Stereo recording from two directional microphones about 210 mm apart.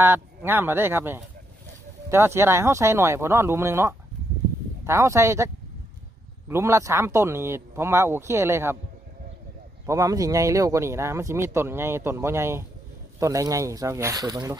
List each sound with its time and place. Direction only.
0.0 s speech: 10° right (ahead or behind)
6.5 s speech: 15° right (ahead or behind)
9.8 s speech: 15° right (ahead or behind)